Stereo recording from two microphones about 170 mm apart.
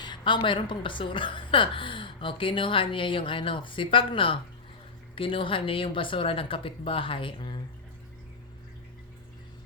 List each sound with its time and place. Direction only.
0.0 s a woman's voice: 25° left (ahead or behind)